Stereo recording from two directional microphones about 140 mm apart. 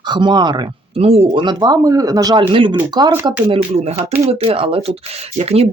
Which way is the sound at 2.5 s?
35° right (ahead or behind).